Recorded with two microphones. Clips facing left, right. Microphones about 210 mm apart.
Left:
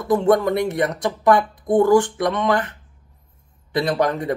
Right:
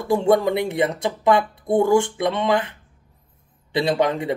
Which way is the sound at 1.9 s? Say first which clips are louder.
Left 2 dB; 25° right (ahead or behind).